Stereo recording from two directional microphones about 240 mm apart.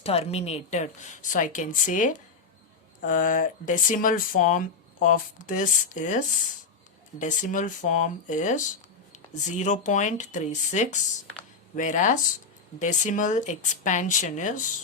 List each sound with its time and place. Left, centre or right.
0.0 s speech: left